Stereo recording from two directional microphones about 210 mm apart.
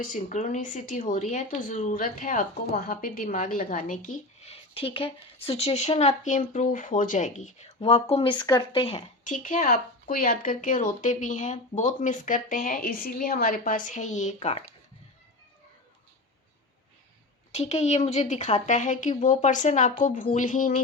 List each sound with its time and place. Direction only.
0.0 s speech: 35° left (ahead or behind)
9.2 s speech: 35° left (ahead or behind)
17.5 s speech: 30° left (ahead or behind)